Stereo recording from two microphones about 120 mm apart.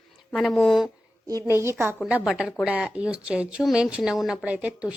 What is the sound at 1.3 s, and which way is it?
Speech, 25° right (ahead or behind).